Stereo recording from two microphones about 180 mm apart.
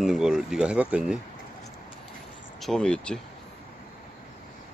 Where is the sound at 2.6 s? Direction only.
5° left (ahead or behind).